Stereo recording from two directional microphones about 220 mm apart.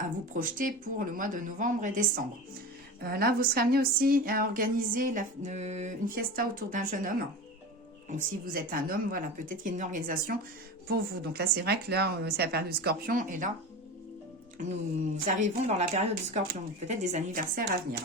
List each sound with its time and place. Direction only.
0.0 s speech: 40° right (ahead or behind)
8.1 s speech: 40° right (ahead or behind)
14.6 s speech: 35° right (ahead or behind)